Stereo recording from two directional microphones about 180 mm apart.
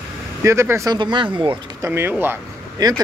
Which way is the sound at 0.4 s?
15° right (ahead or behind).